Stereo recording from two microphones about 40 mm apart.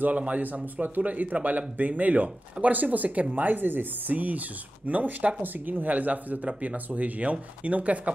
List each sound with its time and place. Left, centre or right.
0.1 s speech: right